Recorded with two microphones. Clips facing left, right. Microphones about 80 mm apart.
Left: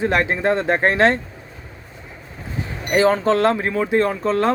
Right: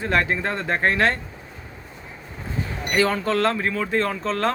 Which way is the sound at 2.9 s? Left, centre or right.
Left.